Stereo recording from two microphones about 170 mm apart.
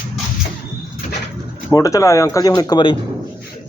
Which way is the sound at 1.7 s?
20° left (ahead or behind).